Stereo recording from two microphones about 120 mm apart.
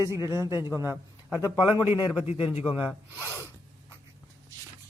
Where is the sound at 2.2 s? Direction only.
55° left (ahead or behind).